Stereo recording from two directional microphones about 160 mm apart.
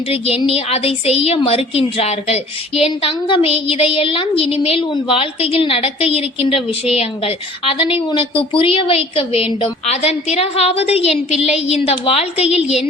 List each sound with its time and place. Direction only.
0.1 s a woman's voice: 35° left (ahead or behind)